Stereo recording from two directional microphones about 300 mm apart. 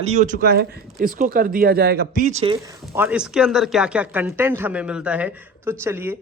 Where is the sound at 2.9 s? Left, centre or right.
Centre.